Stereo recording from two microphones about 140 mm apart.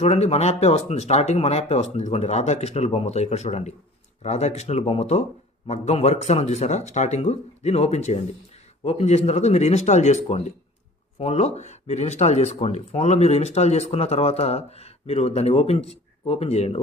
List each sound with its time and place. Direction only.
0.0 s speech: 50° left (ahead or behind)